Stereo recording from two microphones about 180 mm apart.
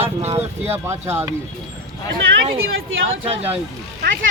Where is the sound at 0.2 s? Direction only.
35° right (ahead or behind).